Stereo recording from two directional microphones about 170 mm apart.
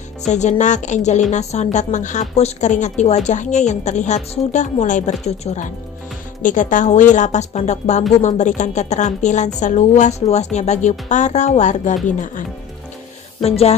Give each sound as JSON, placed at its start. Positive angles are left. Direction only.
{"t": 0.3, "sound": "speech", "side_deg": 45}
{"t": 13.4, "sound": "speech", "side_deg": 35}